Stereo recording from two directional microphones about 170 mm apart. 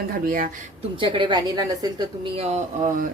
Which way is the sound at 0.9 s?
30° right (ahead or behind).